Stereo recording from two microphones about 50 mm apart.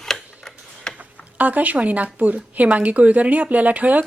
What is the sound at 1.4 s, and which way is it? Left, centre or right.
A woman's voice, right.